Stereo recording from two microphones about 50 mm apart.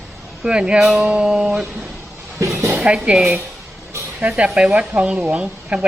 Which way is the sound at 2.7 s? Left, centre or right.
Right.